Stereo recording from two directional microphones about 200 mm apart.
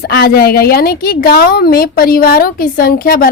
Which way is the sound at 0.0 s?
50° left (ahead or behind).